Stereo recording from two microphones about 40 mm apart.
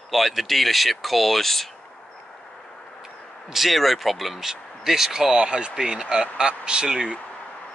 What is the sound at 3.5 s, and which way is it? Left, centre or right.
Speech, centre.